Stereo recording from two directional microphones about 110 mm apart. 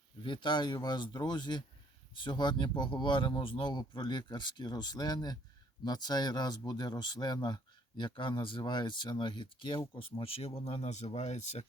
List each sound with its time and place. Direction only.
0.2 s speech: 50° left (ahead or behind); by 11.6 s 90° left